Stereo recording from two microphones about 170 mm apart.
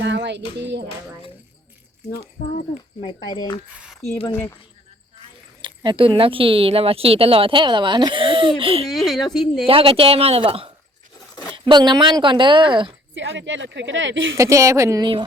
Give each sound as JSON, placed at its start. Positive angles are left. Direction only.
{"t": 0.0, "sound": "speech", "side_deg": -90}
{"t": 2.7, "sound": "speech", "side_deg": 30}
{"t": 4.3, "sound": "speech", "side_deg": 15}
{"t": 5.6, "sound": "speech", "side_deg": -30}
{"t": 8.9, "sound": "a woman's voice", "side_deg": 0}
{"t": 9.6, "sound": "speech", "side_deg": -35}
{"t": 13.1, "sound": "speech", "side_deg": -90}
{"t": 14.3, "sound": "speech", "side_deg": -20}